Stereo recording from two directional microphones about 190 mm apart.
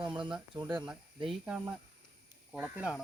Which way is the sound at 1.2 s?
5° right (ahead or behind).